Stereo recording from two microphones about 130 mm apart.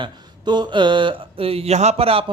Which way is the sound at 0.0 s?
35° right (ahead or behind).